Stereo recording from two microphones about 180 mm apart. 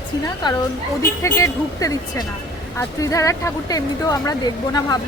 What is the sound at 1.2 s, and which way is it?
Speech, 15° left (ahead or behind).